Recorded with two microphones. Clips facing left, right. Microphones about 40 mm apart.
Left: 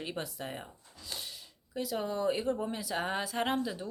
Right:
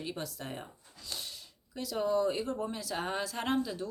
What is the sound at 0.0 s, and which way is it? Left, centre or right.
Speech, left.